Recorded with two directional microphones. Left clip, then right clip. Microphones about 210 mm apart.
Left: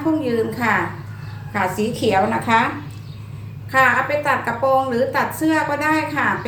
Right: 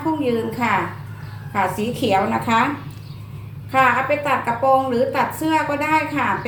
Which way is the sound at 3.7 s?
15° left (ahead or behind).